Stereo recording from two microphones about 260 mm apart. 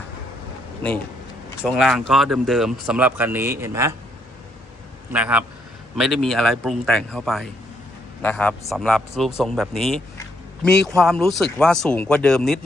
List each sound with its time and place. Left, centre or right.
0.8 s speech: centre
5.1 s speech: centre